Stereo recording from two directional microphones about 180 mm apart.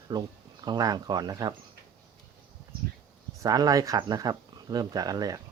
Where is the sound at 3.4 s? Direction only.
20° right (ahead or behind).